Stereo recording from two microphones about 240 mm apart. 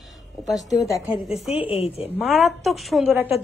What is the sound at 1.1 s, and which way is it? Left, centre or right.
Speech, centre.